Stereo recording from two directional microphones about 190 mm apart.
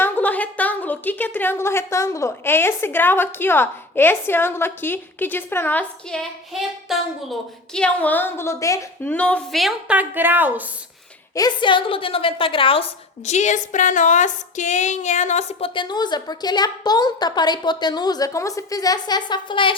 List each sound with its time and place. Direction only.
0.0 s a woman's voice: 10° left (ahead or behind); by 10.5 s 10° right (ahead or behind)
11.3 s speech: 25° left (ahead or behind)
13.2 s speech: 40° left (ahead or behind)